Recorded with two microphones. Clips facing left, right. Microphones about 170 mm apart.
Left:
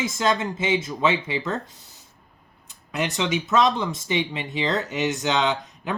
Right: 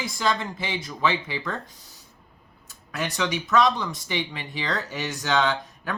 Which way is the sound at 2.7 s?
20° left (ahead or behind).